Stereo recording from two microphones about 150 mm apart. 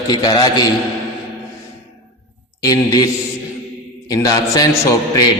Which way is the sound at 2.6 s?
25° left (ahead or behind).